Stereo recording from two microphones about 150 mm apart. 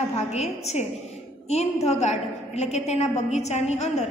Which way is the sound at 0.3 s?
45° left (ahead or behind).